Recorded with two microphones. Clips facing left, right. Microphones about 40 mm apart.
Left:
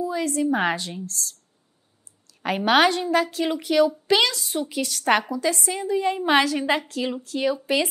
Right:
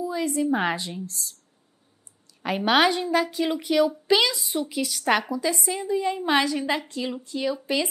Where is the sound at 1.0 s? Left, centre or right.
Centre.